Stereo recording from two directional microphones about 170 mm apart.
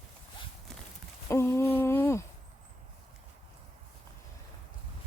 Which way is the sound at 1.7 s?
10° left (ahead or behind).